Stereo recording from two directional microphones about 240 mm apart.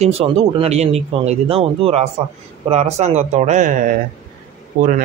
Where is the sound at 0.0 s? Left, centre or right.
Right.